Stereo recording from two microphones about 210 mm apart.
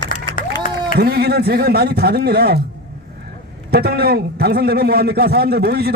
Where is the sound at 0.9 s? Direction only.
50° right (ahead or behind).